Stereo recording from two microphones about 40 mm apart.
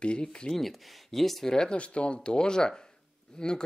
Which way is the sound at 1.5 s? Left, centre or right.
Centre.